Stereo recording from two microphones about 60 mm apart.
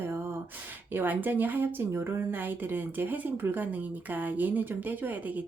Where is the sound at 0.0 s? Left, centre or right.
Right.